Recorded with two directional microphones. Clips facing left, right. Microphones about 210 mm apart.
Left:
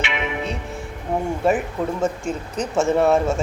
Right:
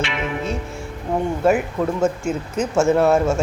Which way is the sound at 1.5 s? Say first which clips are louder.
Right 3 dB; centre (ahead or behind).